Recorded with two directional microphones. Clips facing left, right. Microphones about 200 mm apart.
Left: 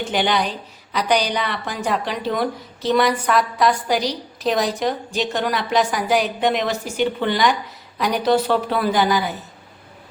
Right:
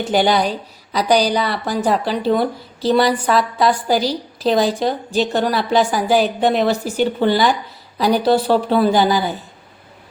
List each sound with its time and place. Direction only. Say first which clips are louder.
0.0 s speech: right 5 dB; 40° right (ahead or behind)